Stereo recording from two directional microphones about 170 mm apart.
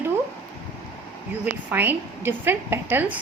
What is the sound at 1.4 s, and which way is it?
A woman's voice, 10° right (ahead or behind).